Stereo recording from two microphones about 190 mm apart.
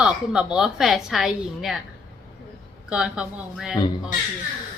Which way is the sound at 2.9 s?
5° right (ahead or behind).